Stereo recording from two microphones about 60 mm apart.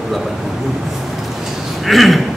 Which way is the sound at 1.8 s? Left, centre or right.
Centre.